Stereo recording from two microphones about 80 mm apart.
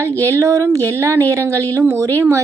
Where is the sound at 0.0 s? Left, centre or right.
Right.